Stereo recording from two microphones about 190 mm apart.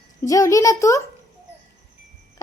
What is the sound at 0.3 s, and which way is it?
Speech, 15° left (ahead or behind).